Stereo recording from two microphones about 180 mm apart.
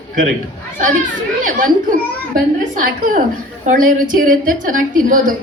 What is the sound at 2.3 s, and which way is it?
A woman's voice, 50° right (ahead or behind).